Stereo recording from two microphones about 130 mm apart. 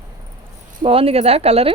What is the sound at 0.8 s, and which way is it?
Speech, 45° right (ahead or behind).